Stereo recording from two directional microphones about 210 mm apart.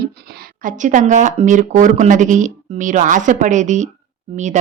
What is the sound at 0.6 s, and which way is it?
Speech, 40° right (ahead or behind).